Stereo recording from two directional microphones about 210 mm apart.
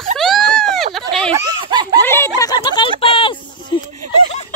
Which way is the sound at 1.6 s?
20° right (ahead or behind).